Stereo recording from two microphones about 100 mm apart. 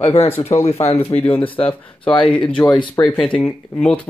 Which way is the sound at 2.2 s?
10° left (ahead or behind).